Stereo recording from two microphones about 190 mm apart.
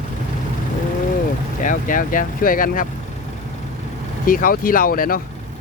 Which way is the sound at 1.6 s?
45° left (ahead or behind).